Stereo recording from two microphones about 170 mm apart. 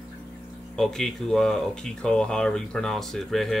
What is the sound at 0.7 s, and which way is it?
Speech, 5° left (ahead or behind).